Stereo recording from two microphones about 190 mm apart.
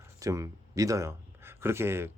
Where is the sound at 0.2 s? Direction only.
15° right (ahead or behind).